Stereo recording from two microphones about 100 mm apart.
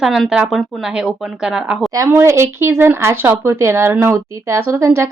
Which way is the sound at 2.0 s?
25° right (ahead or behind).